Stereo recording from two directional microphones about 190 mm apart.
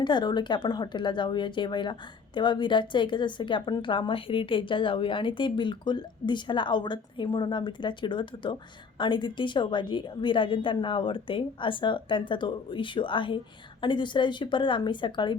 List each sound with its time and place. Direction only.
0.0 s speech: 25° left (ahead or behind)